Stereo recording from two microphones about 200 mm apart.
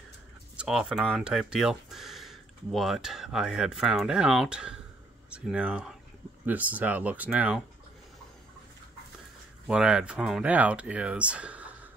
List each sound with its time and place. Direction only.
0.6 s speech: 5° right (ahead or behind)
9.7 s speech: 5° right (ahead or behind)